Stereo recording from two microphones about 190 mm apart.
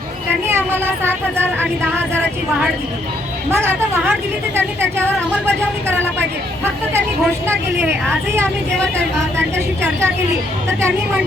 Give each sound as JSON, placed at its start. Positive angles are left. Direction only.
{"t": 0.4, "sound": "speech", "side_deg": -10}
{"t": 3.5, "sound": "speech", "side_deg": -10}
{"t": 5.0, "sound": "speech", "side_deg": 5}
{"t": 7.4, "sound": "speech", "side_deg": -10}
{"t": 8.8, "sound": "speech", "side_deg": 5}
{"t": 10.7, "sound": "speech", "side_deg": -15}